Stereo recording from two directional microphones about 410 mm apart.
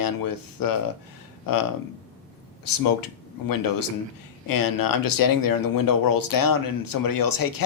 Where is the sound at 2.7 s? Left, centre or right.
Left.